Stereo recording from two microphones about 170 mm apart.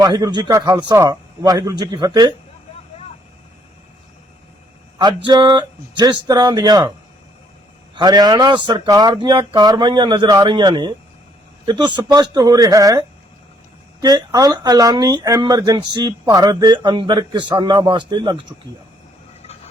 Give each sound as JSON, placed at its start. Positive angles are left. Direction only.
{"t": 0.0, "sound": "speech", "side_deg": -25}
{"t": 4.9, "sound": "speech", "side_deg": -25}
{"t": 7.9, "sound": "speech", "side_deg": -25}